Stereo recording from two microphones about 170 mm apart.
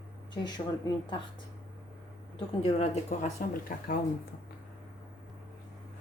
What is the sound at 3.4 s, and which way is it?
Speech, 60° left (ahead or behind).